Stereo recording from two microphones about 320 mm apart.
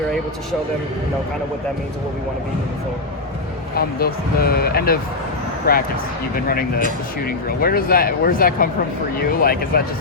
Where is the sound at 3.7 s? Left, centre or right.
Left.